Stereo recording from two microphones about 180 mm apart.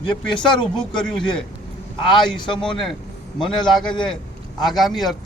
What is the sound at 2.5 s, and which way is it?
A man's voice, 5° left (ahead or behind).